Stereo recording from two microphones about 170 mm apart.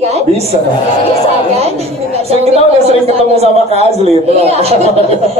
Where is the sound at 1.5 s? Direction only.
40° right (ahead or behind).